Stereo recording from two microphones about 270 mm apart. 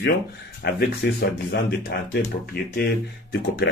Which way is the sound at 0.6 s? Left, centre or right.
Left.